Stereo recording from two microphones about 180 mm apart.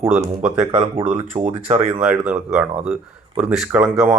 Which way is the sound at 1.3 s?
45° right (ahead or behind).